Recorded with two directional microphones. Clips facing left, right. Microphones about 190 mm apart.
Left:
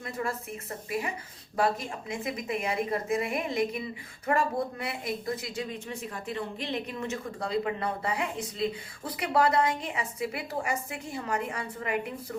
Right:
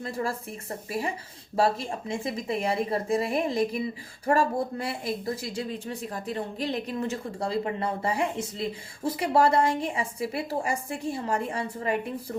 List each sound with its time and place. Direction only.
0.0 s a woman's voice: 30° right (ahead or behind)